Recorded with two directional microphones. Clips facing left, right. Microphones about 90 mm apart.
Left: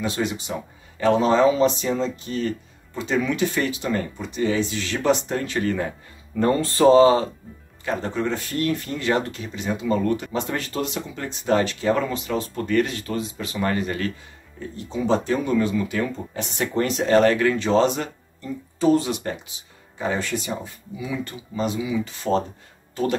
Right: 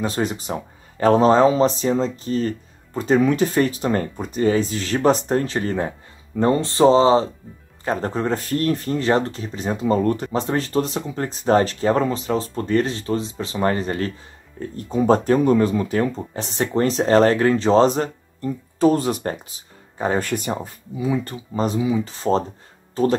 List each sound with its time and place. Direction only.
0.0 s speech: 40° right (ahead or behind)
7.8 s speech: 40° right (ahead or behind)
14.8 s speech: 45° right (ahead or behind)
21.0 s speech: 35° right (ahead or behind)